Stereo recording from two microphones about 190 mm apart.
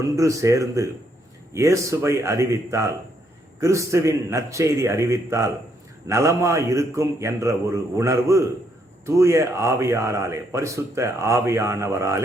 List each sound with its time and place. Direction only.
0.0 s speech: 15° right (ahead or behind)